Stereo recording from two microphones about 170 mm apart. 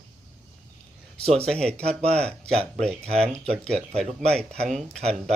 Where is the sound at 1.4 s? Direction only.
5° left (ahead or behind).